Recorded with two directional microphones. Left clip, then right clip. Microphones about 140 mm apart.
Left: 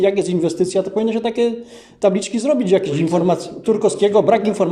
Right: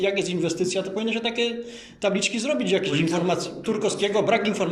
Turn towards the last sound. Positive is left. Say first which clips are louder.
# left 7 dB
turn(degrees=35)  # may be behind; listen again after turning